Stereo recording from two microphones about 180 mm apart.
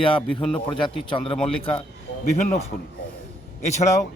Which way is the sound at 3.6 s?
40° left (ahead or behind).